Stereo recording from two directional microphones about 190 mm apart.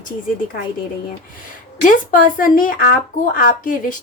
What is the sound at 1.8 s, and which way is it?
A woman's voice, 45° left (ahead or behind).